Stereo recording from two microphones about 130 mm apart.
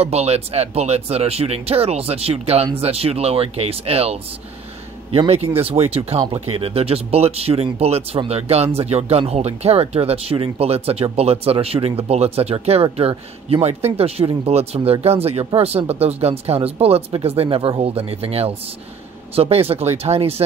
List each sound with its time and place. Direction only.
0.0 s speech: 55° right (ahead or behind)